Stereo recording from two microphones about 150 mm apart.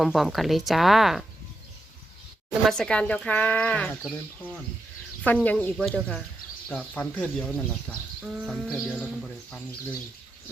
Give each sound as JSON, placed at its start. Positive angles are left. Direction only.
{"t": 0.0, "sound": "speech", "side_deg": 0}
{"t": 2.5, "sound": "speech", "side_deg": 5}
{"t": 5.2, "sound": "speech", "side_deg": 10}
{"t": 8.2, "sound": "speech", "side_deg": 0}